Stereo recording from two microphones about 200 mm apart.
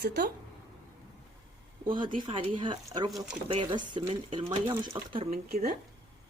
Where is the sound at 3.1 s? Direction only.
Centre (ahead or behind).